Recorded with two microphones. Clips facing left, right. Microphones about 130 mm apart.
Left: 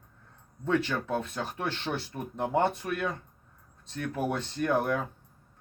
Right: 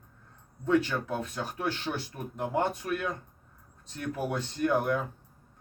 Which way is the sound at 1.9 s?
15° left (ahead or behind).